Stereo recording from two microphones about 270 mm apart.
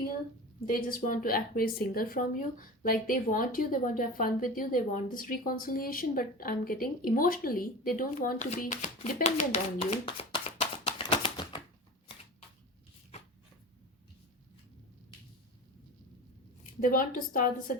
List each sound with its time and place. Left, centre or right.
0.7 s speech: left
9.8 s a sound: left
16.8 s speech: left